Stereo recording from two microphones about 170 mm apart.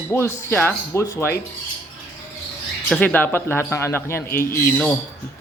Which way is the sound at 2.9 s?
5° left (ahead or behind).